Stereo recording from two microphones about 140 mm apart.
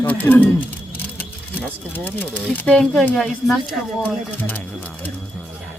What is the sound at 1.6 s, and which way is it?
Speech, 15° left (ahead or behind).